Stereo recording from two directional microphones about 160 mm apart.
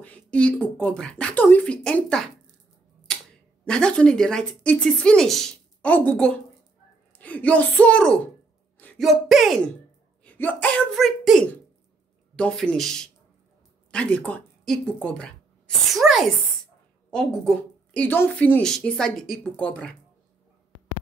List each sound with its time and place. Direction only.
0.0 s speech: 10° left (ahead or behind)
3.1 s camera: 5° left (ahead or behind)
3.6 s a woman's voice: 5° left (ahead or behind)
10.2 s a woman's voice: 10° left (ahead or behind)